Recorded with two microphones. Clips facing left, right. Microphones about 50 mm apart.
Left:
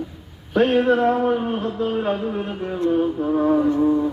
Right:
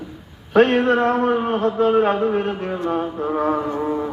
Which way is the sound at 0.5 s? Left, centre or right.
Right.